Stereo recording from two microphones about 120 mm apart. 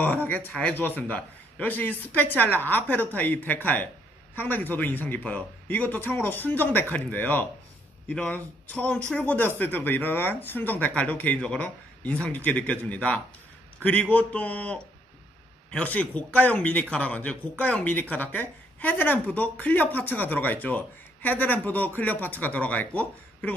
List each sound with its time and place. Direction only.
0.0 s speech: 15° left (ahead or behind)